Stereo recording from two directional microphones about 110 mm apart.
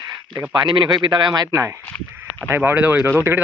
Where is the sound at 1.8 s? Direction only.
15° left (ahead or behind).